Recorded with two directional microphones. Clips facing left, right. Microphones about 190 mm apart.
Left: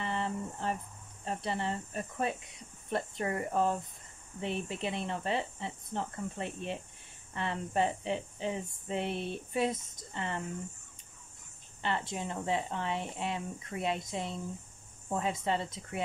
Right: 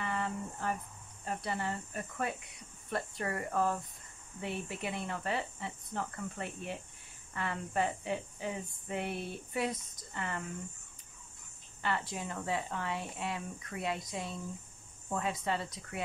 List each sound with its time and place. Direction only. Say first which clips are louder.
0.0 s a sound: left 2 dB; 25° left (ahead or behind)
1.2 s speech: left 2 dB; 25° left (ahead or behind)
11.8 s speech: left 1 dB; 25° left (ahead or behind)